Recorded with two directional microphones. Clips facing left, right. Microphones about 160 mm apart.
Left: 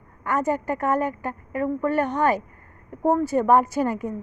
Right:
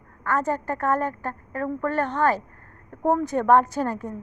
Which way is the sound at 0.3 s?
15° left (ahead or behind).